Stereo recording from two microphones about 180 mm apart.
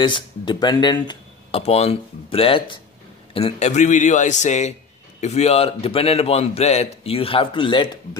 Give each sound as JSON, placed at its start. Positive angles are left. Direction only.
{"t": 0.0, "sound": "a man's voice", "side_deg": 25}